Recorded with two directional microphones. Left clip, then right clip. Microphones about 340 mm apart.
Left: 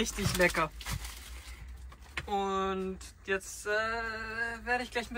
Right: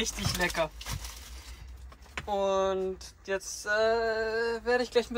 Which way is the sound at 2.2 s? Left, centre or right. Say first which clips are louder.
Right 5 dB; centre.